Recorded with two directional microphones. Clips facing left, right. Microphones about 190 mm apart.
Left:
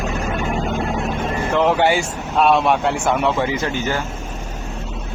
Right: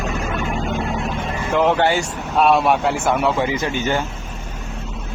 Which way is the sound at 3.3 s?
15° right (ahead or behind).